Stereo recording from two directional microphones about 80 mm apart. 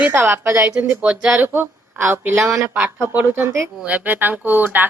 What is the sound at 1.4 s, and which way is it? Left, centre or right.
A woman's voice, right.